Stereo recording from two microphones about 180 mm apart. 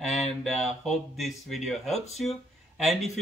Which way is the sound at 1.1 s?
Centre (ahead or behind).